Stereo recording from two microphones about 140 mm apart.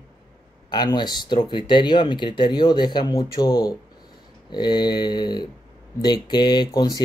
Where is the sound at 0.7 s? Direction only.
30° left (ahead or behind).